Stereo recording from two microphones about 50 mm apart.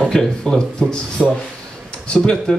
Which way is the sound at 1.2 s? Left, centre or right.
Centre.